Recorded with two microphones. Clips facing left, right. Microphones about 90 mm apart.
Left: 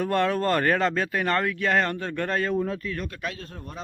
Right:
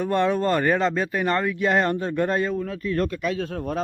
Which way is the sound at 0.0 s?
5° right (ahead or behind).